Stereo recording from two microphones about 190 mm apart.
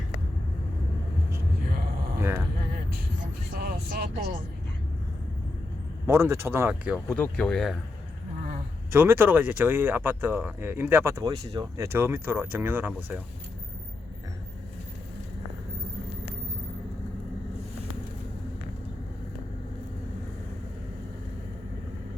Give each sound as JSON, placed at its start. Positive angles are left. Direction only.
{"t": 2.1, "sound": "a sound", "side_deg": -15}
{"t": 3.5, "sound": "vehicle", "side_deg": -55}
{"t": 6.1, "sound": "speech", "side_deg": -15}
{"t": 7.1, "sound": "speech", "side_deg": 5}
{"t": 8.9, "sound": "speech", "side_deg": -10}